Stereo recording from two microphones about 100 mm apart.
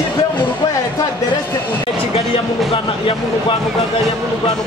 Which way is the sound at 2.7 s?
65° left (ahead or behind).